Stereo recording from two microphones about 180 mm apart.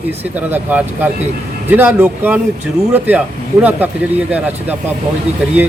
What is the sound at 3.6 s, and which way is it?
Speech, 10° right (ahead or behind).